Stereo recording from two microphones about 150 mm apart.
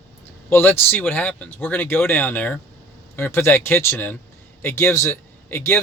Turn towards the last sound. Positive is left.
turn(degrees=15)  # may be behind; listen again after turning